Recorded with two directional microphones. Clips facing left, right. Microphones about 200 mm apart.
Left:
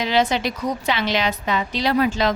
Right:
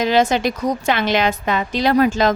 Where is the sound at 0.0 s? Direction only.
45° right (ahead or behind).